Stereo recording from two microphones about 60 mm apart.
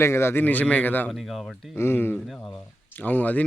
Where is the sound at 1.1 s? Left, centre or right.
Centre.